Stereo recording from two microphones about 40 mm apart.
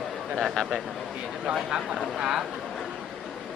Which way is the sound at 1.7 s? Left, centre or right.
Right.